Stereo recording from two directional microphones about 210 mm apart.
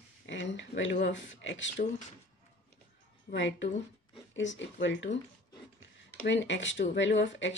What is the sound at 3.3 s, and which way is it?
Speech, 60° left (ahead or behind).